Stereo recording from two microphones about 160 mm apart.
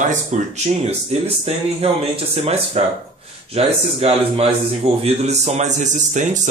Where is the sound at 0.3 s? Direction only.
45° right (ahead or behind).